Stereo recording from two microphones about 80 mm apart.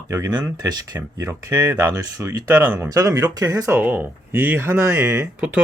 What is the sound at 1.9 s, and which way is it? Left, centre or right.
Speech, right.